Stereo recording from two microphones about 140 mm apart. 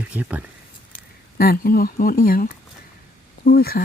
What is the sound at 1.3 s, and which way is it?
Speech, 90° left.